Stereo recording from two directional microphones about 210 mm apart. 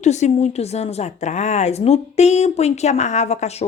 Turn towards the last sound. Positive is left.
turn(degrees=30)  # may be behind; listen again after turning